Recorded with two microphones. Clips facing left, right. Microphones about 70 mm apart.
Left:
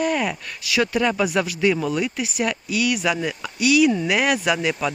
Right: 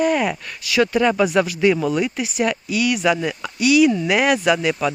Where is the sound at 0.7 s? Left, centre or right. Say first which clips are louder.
Right 4 dB; centre.